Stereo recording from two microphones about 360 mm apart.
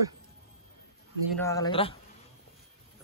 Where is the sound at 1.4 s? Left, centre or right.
Centre.